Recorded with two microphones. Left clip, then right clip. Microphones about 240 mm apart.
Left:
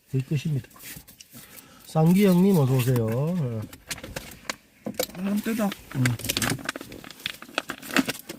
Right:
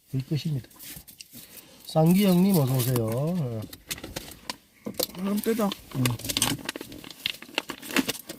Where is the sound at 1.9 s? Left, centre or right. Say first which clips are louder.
Left 1 dB; centre.